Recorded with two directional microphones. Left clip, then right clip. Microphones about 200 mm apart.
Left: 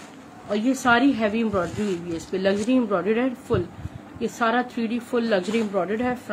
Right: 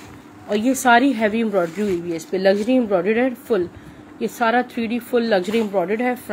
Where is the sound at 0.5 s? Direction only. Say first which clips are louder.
Right 5 dB; 20° right (ahead or behind).